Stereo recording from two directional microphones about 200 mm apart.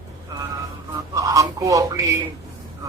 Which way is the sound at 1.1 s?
15° right (ahead or behind).